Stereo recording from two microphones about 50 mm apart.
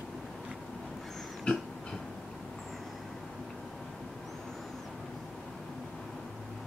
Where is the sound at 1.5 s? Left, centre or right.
Centre.